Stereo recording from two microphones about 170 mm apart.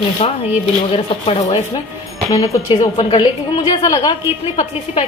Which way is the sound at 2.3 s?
20° left (ahead or behind).